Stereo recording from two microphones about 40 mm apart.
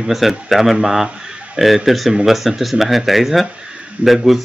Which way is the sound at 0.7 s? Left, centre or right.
Centre.